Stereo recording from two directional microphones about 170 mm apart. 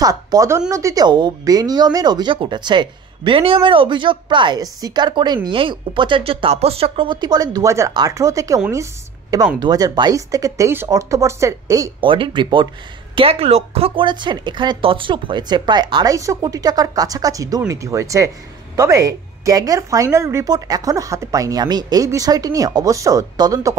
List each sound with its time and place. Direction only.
0.0 s a woman's voice: 20° right (ahead or behind)
9.6 s a woman's voice: 25° right (ahead or behind)